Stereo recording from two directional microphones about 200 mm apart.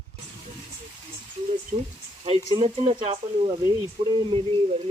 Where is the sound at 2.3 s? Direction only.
30° right (ahead or behind).